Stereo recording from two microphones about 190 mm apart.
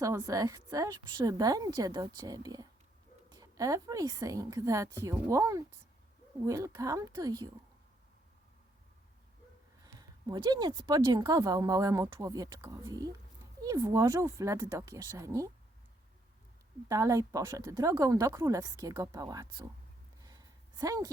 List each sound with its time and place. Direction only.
0.0 s a woman's voice: 15° right (ahead or behind)
9.8 s a woman's voice: 20° right (ahead or behind)
16.9 s a woman's voice: 15° right (ahead or behind)
20.2 s a sound: 20° right (ahead or behind)